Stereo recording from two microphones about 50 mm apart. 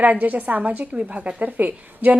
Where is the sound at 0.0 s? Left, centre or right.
Right.